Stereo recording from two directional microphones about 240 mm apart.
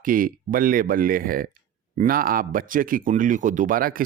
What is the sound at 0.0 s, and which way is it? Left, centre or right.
Speech, right.